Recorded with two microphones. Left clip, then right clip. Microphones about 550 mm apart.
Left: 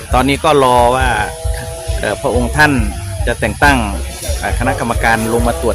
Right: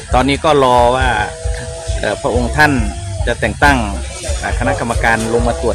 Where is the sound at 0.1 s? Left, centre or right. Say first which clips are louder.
Even; left.